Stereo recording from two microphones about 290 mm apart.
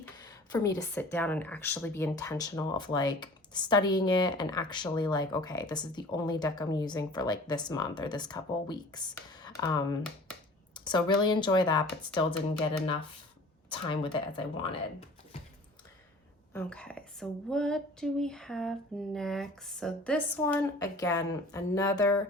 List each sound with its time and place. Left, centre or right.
0.5 s speech: centre
13.7 s speech: centre
16.6 s speech: centre